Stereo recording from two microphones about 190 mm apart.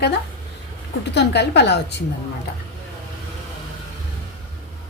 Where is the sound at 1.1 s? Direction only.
65° left (ahead or behind).